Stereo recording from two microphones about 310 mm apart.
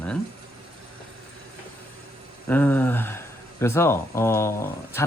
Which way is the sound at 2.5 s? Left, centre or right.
Centre.